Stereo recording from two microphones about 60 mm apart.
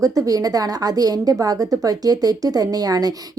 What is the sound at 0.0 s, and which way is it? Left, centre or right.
A woman's voice, right.